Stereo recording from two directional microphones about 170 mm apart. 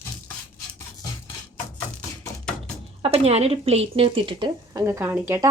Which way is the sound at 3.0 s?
35° right (ahead or behind).